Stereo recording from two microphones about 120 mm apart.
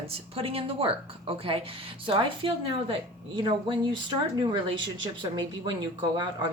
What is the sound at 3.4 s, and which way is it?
A woman's voice, 45° right (ahead or behind).